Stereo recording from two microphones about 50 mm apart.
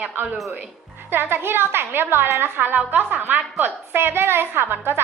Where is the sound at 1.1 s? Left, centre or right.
Right.